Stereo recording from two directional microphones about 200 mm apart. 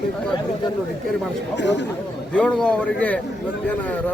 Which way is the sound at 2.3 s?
5° left (ahead or behind).